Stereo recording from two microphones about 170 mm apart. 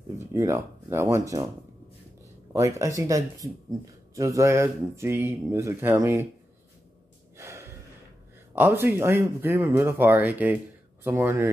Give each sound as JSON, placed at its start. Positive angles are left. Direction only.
{"t": 0.3, "sound": "speech", "side_deg": -15}
{"t": 2.5, "sound": "speech", "side_deg": -20}
{"t": 7.3, "sound": "gasp", "side_deg": -15}
{"t": 8.5, "sound": "speech", "side_deg": -10}